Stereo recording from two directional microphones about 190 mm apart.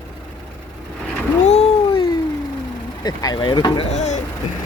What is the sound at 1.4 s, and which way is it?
Cat, 35° left (ahead or behind).